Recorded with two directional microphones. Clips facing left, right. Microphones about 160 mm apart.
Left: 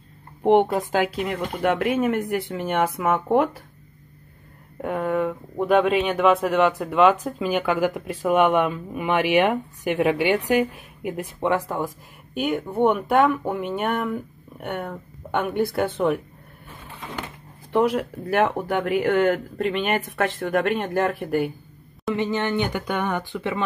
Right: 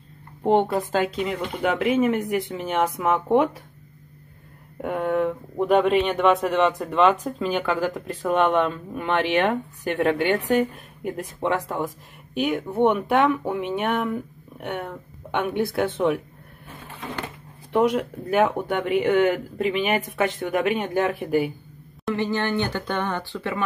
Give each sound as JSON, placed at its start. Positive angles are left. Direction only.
{"t": 0.4, "sound": "speech", "side_deg": 15}
{"t": 1.2, "sound": "speech", "side_deg": 0}
{"t": 4.8, "sound": "speech", "side_deg": 0}
{"t": 17.7, "sound": "speech", "side_deg": 0}
{"t": 22.1, "sound": "speech", "side_deg": 20}